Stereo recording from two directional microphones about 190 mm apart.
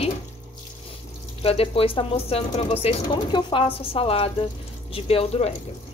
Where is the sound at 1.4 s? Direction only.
30° left (ahead or behind).